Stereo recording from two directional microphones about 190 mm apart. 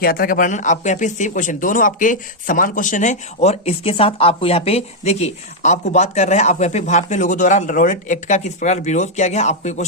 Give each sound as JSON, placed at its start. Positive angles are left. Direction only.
{"t": 0.0, "sound": "speech", "side_deg": 50}